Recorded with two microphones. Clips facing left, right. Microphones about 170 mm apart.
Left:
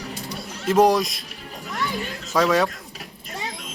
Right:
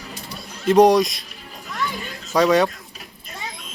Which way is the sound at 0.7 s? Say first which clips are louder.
Right 4 dB; centre (ahead or behind).